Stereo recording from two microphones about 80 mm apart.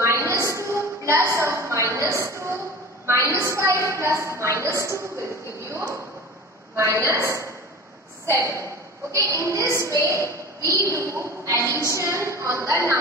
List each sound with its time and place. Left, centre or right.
0.0 s a sound: right
3.1 s a woman's voice: right
5.7 s a sound: right
6.8 s a woman's voice: right
10.2 s a woman's voice: left
10.9 s a woman's voice: right